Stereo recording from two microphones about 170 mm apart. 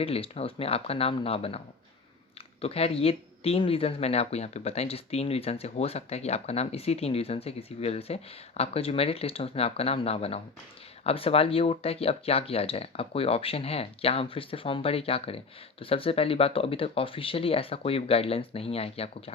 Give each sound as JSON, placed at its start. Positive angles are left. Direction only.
{"t": 0.0, "sound": "speech", "side_deg": 35}